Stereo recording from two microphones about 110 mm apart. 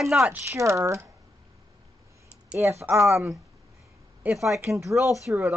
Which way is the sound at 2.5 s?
25° right (ahead or behind).